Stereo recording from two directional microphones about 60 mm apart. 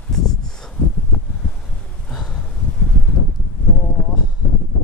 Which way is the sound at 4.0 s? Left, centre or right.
Left.